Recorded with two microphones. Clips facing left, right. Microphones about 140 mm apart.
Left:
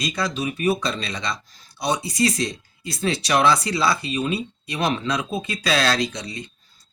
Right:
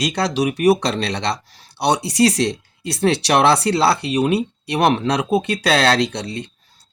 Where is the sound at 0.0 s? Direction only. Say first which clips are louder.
Right 6 dB; 70° right (ahead or behind).